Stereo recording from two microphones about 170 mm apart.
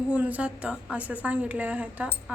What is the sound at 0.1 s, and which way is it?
A woman's voice, 10° right (ahead or behind).